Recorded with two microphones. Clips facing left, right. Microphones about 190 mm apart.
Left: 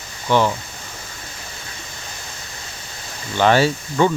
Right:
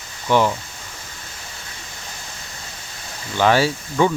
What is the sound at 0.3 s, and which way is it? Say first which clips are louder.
Speech: even; 10° right (ahead or behind).